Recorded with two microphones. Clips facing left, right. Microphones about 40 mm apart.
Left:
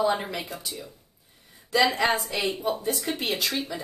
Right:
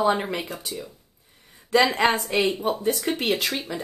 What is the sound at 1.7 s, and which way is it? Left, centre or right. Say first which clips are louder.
A woman's voice: right 3 dB; right.